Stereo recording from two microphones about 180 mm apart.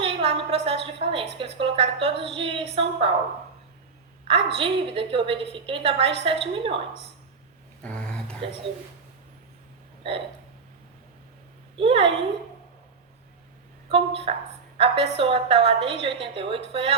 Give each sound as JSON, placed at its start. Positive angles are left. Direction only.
{"t": 0.0, "sound": "a woman's voice", "side_deg": -30}
{"t": 4.3, "sound": "a woman's voice", "side_deg": -30}
{"t": 7.8, "sound": "a sound", "side_deg": 5}
{"t": 11.8, "sound": "a woman's voice", "side_deg": -30}
{"t": 13.9, "sound": "a woman's voice", "side_deg": -30}